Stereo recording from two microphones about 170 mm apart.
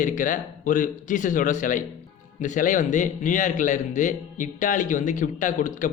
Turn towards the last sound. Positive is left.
turn(degrees=45)  # may be behind; listen again after turning